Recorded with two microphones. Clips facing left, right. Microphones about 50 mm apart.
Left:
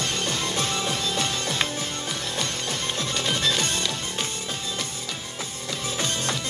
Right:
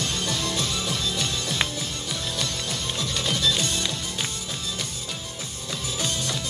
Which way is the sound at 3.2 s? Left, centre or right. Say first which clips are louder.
Even; left.